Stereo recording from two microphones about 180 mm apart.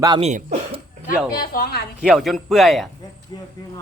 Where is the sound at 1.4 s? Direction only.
55° left (ahead or behind).